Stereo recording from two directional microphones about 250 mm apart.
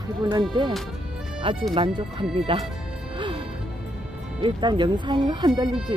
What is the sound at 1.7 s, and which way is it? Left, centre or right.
Speech, centre.